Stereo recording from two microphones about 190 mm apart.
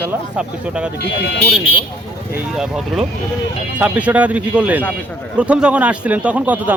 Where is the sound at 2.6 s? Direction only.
5° right (ahead or behind).